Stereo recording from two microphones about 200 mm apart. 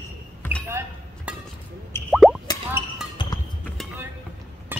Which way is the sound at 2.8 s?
25° left (ahead or behind).